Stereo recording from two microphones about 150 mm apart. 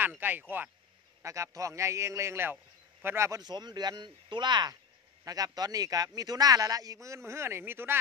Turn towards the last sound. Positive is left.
turn(degrees=-15)  # may be behind; listen again after turning